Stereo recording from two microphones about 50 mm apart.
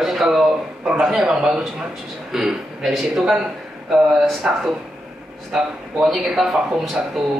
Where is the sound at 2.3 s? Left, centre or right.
Centre.